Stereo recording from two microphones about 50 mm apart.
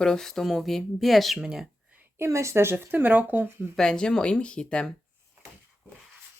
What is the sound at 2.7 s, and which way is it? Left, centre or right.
Speech, right.